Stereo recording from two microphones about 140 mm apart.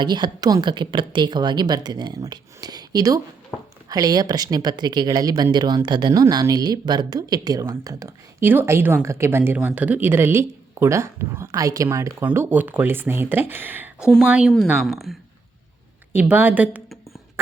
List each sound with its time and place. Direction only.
0.0 s speech: 30° right (ahead or behind); by 14.1 s 15° right (ahead or behind)
14.8 s speech: centre (ahead or behind)
16.1 s a woman's voice: 15° right (ahead or behind)